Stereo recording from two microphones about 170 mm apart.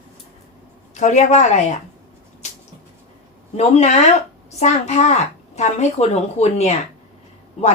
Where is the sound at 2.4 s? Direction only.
40° left (ahead or behind).